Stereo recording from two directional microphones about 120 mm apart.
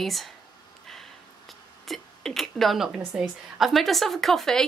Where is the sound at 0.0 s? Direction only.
Centre (ahead or behind).